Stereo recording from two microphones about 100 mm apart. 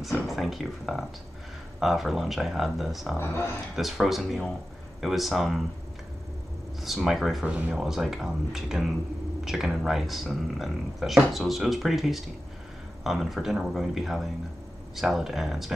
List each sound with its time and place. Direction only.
0.0 s speech: centre (ahead or behind)
3.2 s speech: 25° left (ahead or behind)
3.7 s speech: centre (ahead or behind)
6.8 s speech: centre (ahead or behind)
7.4 s speech: 10° right (ahead or behind)